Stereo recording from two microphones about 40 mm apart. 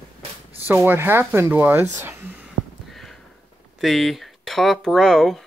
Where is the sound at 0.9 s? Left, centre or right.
Right.